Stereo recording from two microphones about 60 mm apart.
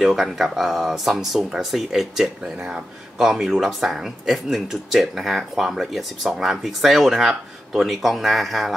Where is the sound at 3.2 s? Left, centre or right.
Centre.